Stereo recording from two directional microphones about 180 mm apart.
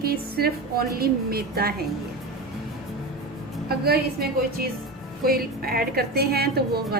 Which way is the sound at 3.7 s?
60° right (ahead or behind).